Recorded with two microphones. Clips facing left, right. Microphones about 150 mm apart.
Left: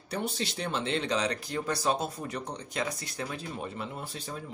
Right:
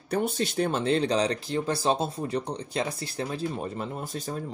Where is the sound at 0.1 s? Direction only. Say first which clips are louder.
Right 6 dB; 50° right (ahead or behind).